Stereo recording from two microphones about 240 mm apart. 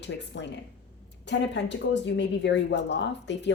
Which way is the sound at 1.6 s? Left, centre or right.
Left.